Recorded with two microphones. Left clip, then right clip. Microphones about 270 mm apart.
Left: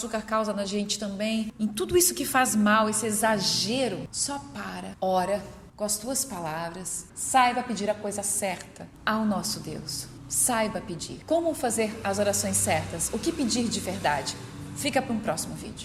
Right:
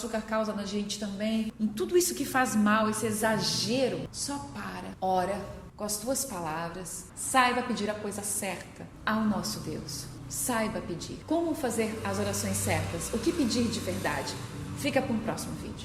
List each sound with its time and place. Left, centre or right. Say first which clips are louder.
0.1 s a woman's voice: left 4 dB; left